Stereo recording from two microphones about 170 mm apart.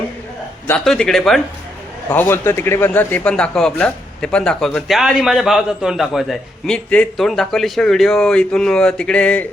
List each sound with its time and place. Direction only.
0.7 s a man's voice: 5° left (ahead or behind)